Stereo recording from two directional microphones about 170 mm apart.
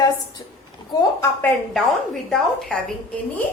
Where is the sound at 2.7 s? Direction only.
5° left (ahead or behind).